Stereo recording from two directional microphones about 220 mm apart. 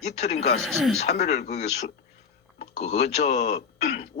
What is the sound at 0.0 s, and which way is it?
Speech, 30° left (ahead or behind).